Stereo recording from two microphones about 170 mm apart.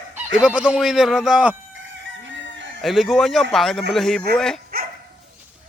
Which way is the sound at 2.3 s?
90° right.